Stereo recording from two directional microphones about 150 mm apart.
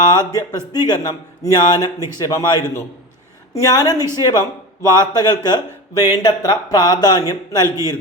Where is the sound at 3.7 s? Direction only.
25° left (ahead or behind).